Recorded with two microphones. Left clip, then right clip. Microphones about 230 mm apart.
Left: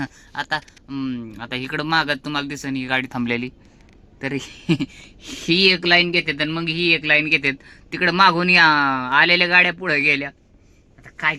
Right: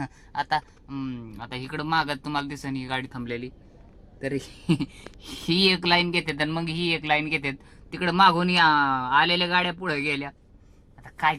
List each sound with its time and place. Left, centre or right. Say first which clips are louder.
0.0 s speech: left 2 dB; centre
3.1 s speech: left 9 dB; left; by 10.3 s centre